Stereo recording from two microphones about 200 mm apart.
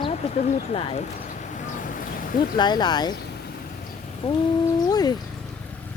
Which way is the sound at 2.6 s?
20° left (ahead or behind).